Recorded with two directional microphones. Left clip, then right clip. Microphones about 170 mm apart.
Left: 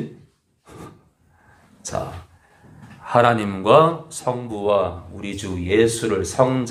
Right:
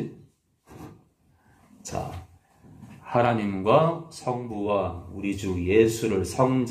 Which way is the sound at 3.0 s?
20° left (ahead or behind).